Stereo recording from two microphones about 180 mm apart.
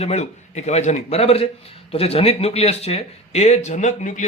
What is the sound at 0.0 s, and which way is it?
Speech, 40° left (ahead or behind).